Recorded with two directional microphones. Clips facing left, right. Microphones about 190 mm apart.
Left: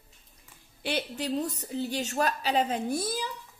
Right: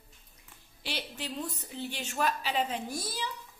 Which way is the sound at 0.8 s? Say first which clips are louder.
Left 7 dB; 55° left (ahead or behind).